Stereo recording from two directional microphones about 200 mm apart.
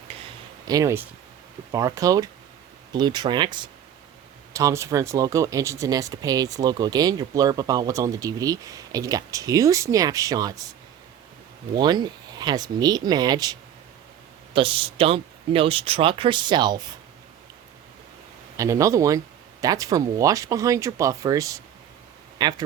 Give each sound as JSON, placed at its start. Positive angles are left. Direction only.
{"t": 0.7, "sound": "speech", "side_deg": -15}
{"t": 11.7, "sound": "speech", "side_deg": -20}
{"t": 18.5, "sound": "speech", "side_deg": -15}